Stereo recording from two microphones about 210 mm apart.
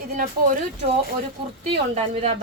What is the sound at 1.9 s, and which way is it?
Speech, 30° right (ahead or behind).